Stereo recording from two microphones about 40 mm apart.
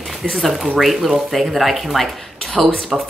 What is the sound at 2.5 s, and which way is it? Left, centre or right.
Speech, left.